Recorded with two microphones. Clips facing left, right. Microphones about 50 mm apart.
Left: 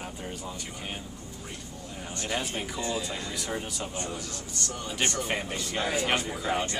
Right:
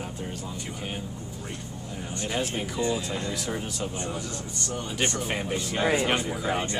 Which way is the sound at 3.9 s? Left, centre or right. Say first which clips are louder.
Right 3 dB; centre.